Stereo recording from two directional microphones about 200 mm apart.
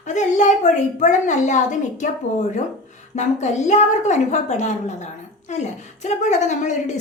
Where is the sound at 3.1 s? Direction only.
35° left (ahead or behind).